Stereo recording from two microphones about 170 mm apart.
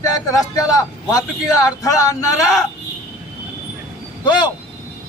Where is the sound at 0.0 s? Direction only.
20° left (ahead or behind).